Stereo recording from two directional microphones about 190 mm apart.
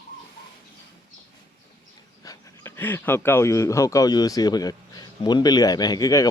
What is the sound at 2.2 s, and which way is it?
Speech, 15° left (ahead or behind).